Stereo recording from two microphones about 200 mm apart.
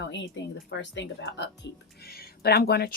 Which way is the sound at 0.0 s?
65° left (ahead or behind).